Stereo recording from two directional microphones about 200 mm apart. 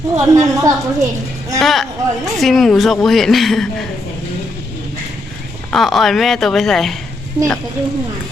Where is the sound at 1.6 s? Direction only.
Centre (ahead or behind).